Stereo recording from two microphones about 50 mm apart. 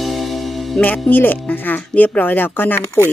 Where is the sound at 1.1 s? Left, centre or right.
Left.